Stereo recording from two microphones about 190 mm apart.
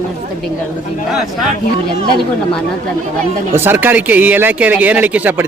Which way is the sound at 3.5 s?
10° right (ahead or behind).